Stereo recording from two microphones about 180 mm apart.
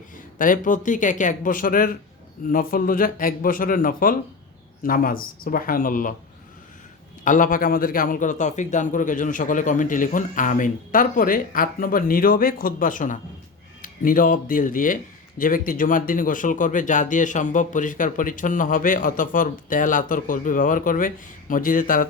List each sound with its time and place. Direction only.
0.3 s a man's voice: 50° left (ahead or behind)
7.3 s a man's voice: 45° left (ahead or behind)